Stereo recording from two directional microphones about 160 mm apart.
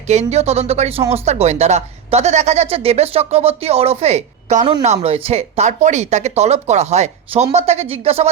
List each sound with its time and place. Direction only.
0.1 s speech: 45° right (ahead or behind)